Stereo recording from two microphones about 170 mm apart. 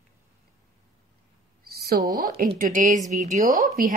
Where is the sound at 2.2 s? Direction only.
60° right (ahead or behind).